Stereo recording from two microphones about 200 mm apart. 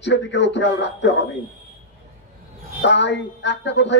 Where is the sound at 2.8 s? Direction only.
60° left (ahead or behind).